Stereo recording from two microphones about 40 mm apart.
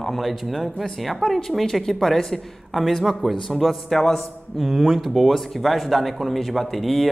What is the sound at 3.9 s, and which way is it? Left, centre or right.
Speech, centre.